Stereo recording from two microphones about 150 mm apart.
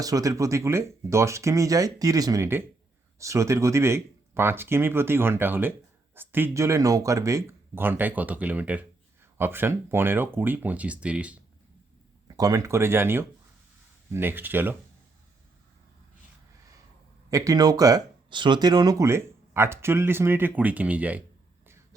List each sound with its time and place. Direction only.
0.0 s speech: 25° right (ahead or behind); by 11.3 s 10° right (ahead or behind)
12.4 s speech: 25° right (ahead or behind)
17.2 s speech: 20° right (ahead or behind)